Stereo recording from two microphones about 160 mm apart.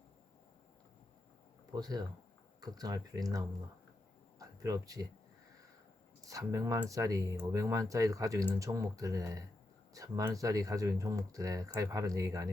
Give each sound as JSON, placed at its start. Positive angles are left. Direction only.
{"t": 1.7, "sound": "speech", "side_deg": -25}
{"t": 4.4, "sound": "a sound", "side_deg": -20}
{"t": 6.2, "sound": "speech", "side_deg": -20}